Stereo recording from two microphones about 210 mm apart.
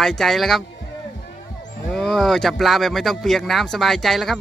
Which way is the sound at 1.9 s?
Centre (ahead or behind).